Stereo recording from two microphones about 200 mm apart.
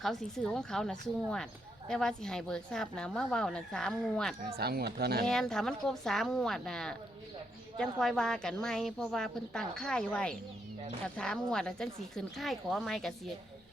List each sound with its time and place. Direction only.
0.0 s a woman's voice: centre (ahead or behind)
4.4 s speech: 50° right (ahead or behind)
5.2 s a woman's voice: 5° left (ahead or behind)